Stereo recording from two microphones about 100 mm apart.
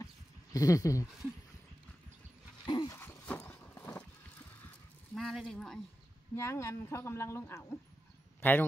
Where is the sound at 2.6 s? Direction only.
50° left (ahead or behind).